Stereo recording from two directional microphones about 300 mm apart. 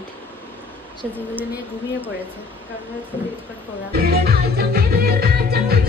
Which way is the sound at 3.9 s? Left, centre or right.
Right.